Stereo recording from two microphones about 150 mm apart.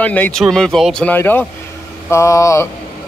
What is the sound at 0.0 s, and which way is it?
A man's voice, 10° left (ahead or behind).